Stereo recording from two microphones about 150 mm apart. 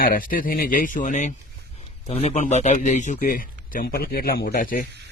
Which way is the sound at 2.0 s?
45° left (ahead or behind).